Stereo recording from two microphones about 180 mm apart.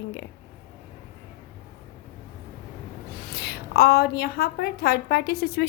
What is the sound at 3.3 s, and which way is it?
A woman's voice, 65° left (ahead or behind).